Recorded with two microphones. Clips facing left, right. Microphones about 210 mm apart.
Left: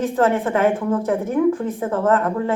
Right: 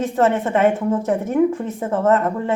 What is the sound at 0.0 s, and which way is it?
A woman's voice, 25° right (ahead or behind).